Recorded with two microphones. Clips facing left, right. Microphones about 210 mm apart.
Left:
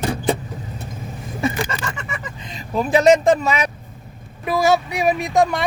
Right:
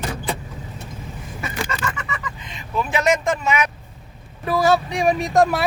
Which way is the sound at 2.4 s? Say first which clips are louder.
Left 4 dB; 35° left (ahead or behind).